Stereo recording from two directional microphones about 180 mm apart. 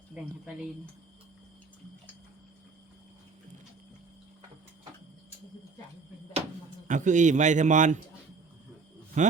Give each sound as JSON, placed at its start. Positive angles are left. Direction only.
{"t": 0.1, "sound": "a woman's voice", "side_deg": -5}
{"t": 6.8, "sound": "a man's voice", "side_deg": -45}
{"t": 9.2, "sound": "a man's voice", "side_deg": -40}